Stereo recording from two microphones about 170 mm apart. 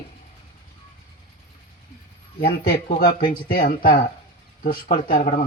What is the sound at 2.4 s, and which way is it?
Speech, 65° left (ahead or behind).